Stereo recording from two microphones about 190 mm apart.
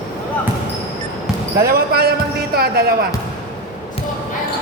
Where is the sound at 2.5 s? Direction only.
55° right (ahead or behind).